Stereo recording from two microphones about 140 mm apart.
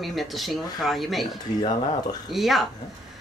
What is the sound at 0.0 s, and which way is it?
A woman's voice, centre (ahead or behind).